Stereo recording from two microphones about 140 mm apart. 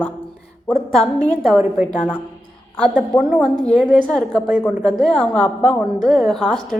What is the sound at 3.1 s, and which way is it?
Speech, 25° left (ahead or behind).